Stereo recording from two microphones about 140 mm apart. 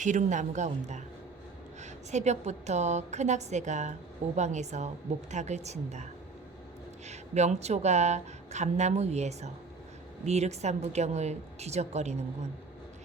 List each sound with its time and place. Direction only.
0.0 s a woman's voice: 60° right (ahead or behind)
7.1 s speech: 55° right (ahead or behind)